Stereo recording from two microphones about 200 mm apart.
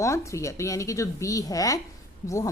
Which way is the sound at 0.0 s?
15° left (ahead or behind).